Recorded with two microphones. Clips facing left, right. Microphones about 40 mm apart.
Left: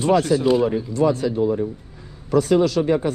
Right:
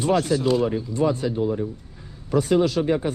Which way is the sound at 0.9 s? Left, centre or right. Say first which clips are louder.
Left 3 dB; right.